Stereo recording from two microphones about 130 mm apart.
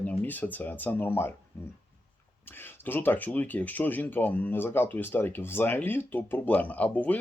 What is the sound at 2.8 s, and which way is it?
Speech, 15° left (ahead or behind).